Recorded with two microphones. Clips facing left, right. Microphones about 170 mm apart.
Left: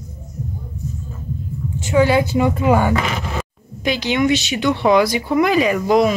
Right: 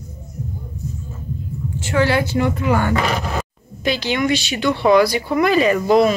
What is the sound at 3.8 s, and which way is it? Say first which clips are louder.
A woman's voice: left 2 dB; 15° left (ahead or behind).